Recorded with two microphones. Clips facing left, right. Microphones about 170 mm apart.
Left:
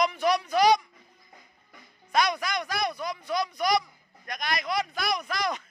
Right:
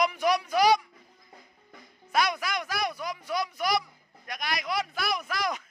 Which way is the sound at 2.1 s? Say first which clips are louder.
Left 1 dB; 5° right (ahead or behind).